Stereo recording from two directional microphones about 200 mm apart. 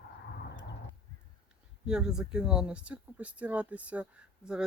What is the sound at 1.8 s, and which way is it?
Speech, 5° right (ahead or behind).